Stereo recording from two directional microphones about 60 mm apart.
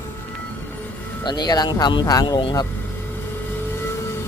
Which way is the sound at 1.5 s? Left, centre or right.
Left.